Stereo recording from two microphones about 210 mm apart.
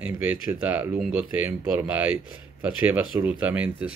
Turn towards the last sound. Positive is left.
turn(degrees=-5)  # may be behind; listen again after turning